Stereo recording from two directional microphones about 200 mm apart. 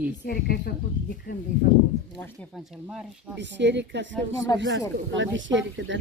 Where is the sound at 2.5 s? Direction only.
Centre (ahead or behind).